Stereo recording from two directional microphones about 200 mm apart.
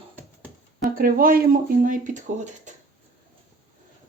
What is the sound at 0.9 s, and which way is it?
Speech, 45° right (ahead or behind).